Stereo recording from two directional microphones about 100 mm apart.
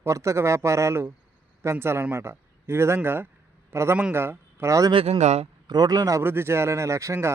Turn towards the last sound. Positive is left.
turn(degrees=-30)  # may be behind; listen again after turning